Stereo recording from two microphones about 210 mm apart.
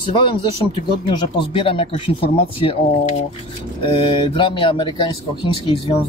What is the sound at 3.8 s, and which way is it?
Speech, 25° left (ahead or behind).